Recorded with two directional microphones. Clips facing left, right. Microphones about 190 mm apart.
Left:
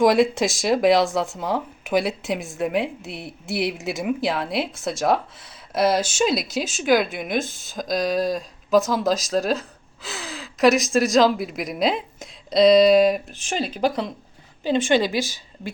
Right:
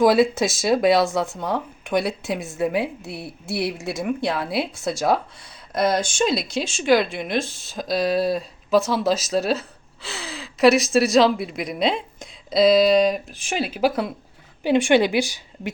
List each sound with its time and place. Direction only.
0.0 s a woman's voice: centre (ahead or behind)